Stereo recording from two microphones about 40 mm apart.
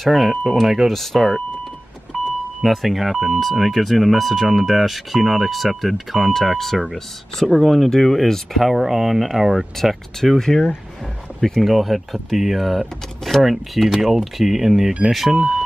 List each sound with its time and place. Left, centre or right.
0.0 s speech: centre
0.8 s speech: centre
2.1 s vehicle: right
2.6 s speech: centre
11.6 s speech: centre